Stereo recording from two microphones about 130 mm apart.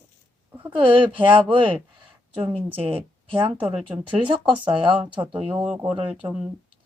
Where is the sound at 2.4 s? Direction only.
45° right (ahead or behind).